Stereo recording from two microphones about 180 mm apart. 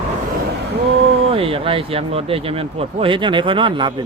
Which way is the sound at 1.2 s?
30° right (ahead or behind).